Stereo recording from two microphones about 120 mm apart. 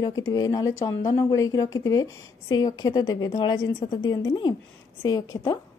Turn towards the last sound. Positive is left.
turn(degrees=30)  # may be behind; listen again after turning